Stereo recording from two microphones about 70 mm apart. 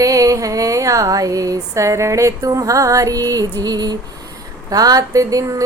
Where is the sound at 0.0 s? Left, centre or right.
Right.